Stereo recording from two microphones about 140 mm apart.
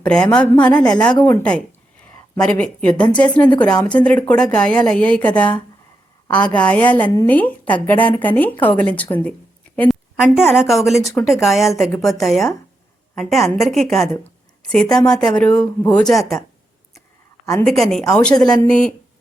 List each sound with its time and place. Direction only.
0.0 s speech: 10° left (ahead or behind)
9.9 s speech: centre (ahead or behind)
17.4 s a woman's voice: 20° left (ahead or behind)
17.7 s speech: 5° left (ahead or behind)